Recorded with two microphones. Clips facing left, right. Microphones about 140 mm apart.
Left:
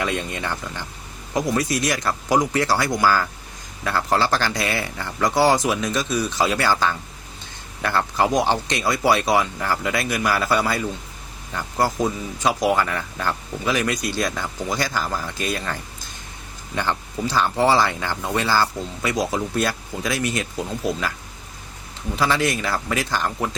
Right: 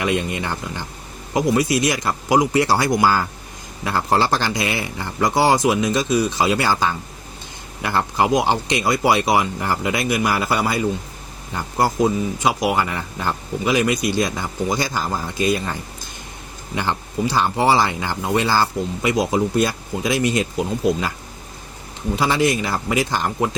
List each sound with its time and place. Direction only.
0.0 s speech: 15° right (ahead or behind)
1.5 s speech: 15° right (ahead or behind)
12.4 s speech: 15° right (ahead or behind)
16.7 s speech: 15° right (ahead or behind)
22.1 s speech: 20° right (ahead or behind)